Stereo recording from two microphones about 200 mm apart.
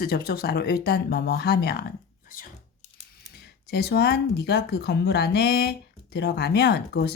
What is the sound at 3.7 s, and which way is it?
Speech, 55° left (ahead or behind).